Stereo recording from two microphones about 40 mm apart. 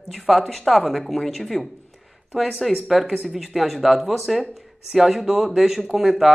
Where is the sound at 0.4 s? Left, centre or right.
Centre.